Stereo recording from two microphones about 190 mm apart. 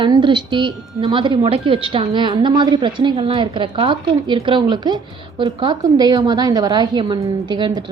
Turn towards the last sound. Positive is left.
turn(degrees=-25)  # may be behind; listen again after turning